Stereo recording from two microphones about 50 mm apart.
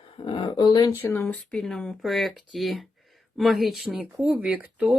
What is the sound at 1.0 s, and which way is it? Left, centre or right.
Speech, left.